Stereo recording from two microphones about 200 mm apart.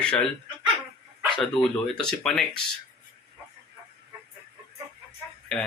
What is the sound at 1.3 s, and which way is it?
Speech, centre (ahead or behind).